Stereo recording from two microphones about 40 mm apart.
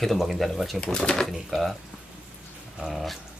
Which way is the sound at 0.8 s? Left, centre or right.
Left.